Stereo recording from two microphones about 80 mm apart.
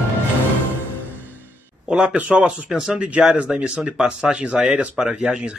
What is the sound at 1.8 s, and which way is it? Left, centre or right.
Speech, centre.